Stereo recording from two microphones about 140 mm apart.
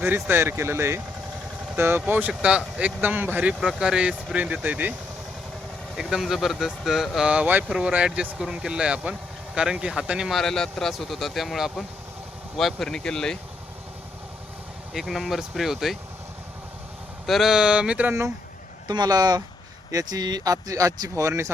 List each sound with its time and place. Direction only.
0.0 s speech: 15° right (ahead or behind)
6.0 s speech: 5° right (ahead or behind)
14.9 s speech: centre (ahead or behind)
17.2 s speech: centre (ahead or behind)
18.9 s speech: 30° right (ahead or behind)